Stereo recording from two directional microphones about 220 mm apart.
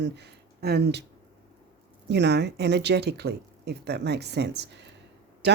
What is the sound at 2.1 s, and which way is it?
Speech, 50° right (ahead or behind).